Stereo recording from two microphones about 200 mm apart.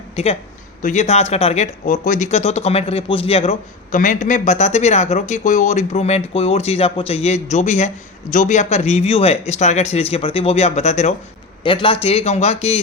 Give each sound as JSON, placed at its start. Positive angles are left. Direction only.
{"t": 0.2, "sound": "speech", "side_deg": 30}